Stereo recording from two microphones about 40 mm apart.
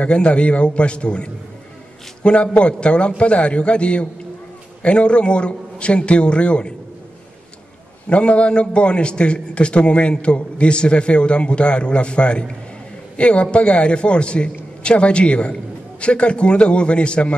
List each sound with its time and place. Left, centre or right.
0.0 s a man's voice: left
8.1 s a man's voice: left